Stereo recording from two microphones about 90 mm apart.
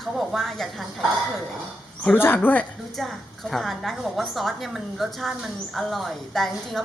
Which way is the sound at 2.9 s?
Centre (ahead or behind).